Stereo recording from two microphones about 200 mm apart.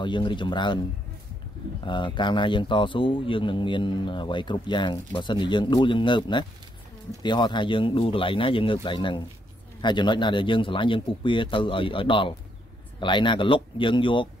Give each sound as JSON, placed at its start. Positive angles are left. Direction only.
{"t": 0.0, "sound": "speech", "side_deg": 25}
{"t": 1.9, "sound": "speech", "side_deg": 25}